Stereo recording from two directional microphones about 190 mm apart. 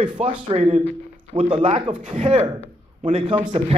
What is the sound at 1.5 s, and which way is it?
Speech, 25° right (ahead or behind).